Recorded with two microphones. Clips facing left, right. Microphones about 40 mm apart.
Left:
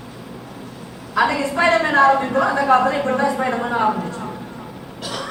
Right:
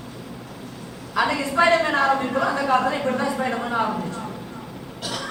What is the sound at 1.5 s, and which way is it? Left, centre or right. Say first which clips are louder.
A woman's voice: left 2 dB; centre.